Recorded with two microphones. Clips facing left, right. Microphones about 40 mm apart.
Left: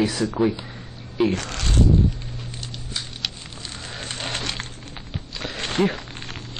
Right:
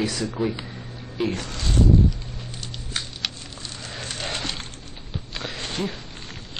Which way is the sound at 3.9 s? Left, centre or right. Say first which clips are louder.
Left 1 dB; left.